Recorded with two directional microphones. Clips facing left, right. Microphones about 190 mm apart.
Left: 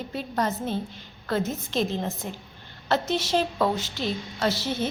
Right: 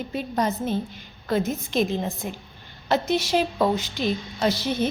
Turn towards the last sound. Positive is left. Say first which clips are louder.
# right 3 dB
turn(degrees=-15)  # may be behind; listen again after turning